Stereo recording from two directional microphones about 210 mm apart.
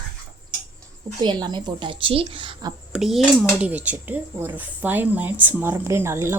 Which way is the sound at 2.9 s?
Centre (ahead or behind).